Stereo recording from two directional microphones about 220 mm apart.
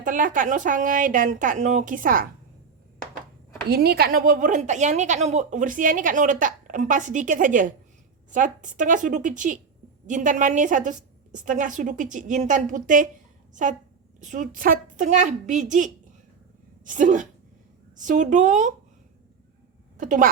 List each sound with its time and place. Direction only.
0.0 s a woman's voice: 35° right (ahead or behind)
3.7 s a woman's voice: 45° right (ahead or behind)
20.0 s a woman's voice: 35° right (ahead or behind)